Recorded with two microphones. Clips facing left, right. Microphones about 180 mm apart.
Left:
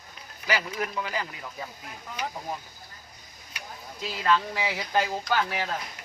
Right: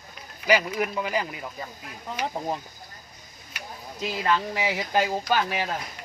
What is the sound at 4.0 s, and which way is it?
Speech, 15° right (ahead or behind).